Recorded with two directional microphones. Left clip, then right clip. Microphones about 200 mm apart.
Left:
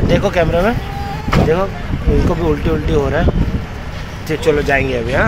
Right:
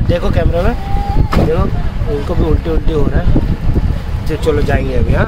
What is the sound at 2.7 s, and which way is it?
Speech, 20° left (ahead or behind).